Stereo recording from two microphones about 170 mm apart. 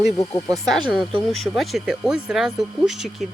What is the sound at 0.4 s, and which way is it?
Speech, centre (ahead or behind).